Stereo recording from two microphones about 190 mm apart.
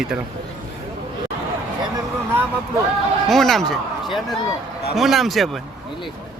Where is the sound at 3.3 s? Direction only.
Centre (ahead or behind).